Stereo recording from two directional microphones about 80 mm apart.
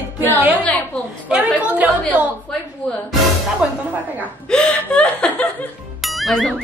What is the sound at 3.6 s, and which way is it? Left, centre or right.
Speech, centre.